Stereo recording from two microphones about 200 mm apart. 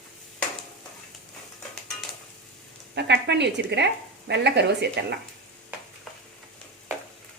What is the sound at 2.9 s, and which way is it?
A woman's voice, 55° right (ahead or behind).